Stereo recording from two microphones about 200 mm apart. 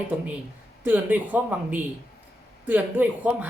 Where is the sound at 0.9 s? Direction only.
10° right (ahead or behind).